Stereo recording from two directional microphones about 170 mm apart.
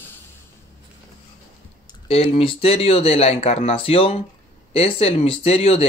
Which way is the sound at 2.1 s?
35° left (ahead or behind).